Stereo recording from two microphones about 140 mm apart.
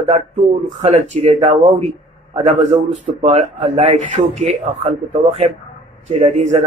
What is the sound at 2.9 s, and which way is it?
A man's voice, 50° right (ahead or behind).